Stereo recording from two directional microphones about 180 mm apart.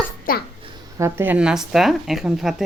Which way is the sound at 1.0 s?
15° right (ahead or behind).